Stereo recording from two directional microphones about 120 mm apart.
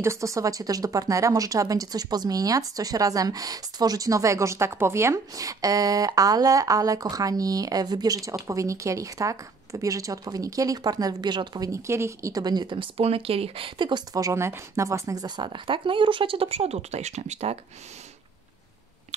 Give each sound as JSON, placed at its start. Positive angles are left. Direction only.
{"t": 0.0, "sound": "a woman's voice", "side_deg": -25}
{"t": 11.7, "sound": "speech", "side_deg": -25}